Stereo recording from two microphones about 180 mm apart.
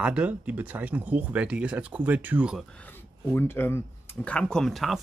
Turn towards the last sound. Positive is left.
turn(degrees=0)  # may be behind; listen again after turning